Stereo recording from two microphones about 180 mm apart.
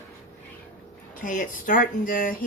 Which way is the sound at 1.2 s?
50° left (ahead or behind).